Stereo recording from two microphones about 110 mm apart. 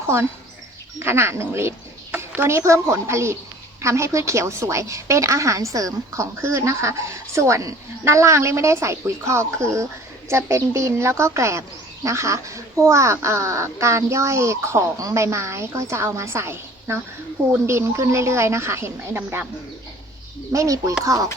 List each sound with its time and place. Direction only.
0.9 s a woman's voice: 25° right (ahead or behind)
20.5 s a woman's voice: 30° right (ahead or behind)